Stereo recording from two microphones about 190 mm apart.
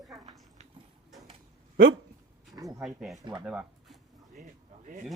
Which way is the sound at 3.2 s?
20° right (ahead or behind).